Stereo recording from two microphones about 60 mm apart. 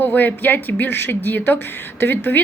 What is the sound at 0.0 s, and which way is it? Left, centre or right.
A woman's voice, left.